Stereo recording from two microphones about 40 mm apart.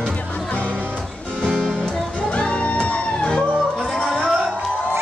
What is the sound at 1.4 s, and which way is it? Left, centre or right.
Music, centre.